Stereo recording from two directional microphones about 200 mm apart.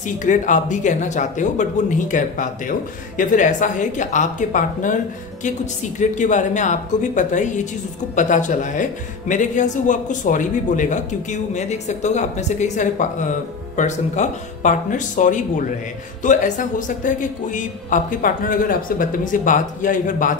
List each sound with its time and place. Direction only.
0.2 s a man's voice: 40° left (ahead or behind)